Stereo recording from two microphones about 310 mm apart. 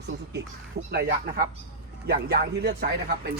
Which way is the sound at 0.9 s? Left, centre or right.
Right.